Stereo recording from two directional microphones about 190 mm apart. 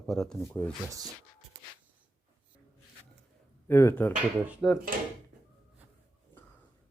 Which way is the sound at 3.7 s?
10° left (ahead or behind).